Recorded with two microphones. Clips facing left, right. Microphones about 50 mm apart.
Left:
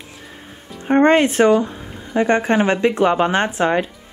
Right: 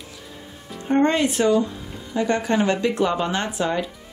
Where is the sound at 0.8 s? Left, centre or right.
Left.